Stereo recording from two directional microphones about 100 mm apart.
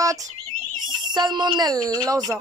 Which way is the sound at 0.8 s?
45° right (ahead or behind).